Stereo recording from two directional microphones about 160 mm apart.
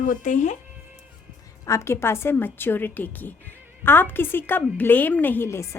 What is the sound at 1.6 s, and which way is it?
A woman's voice, 20° left (ahead or behind).